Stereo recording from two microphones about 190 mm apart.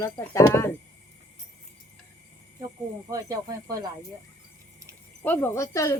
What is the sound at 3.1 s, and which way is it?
Speech, 20° right (ahead or behind).